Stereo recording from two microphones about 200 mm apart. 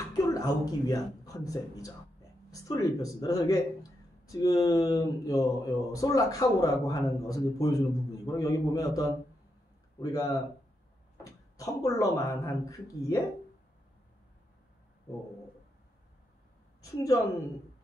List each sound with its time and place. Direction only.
0.1 s speech: 20° left (ahead or behind)
11.2 s speech: 15° left (ahead or behind)
16.8 s a woman's voice: 15° left (ahead or behind)